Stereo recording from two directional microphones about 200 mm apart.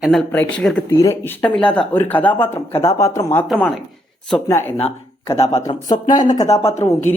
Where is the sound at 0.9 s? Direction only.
15° left (ahead or behind).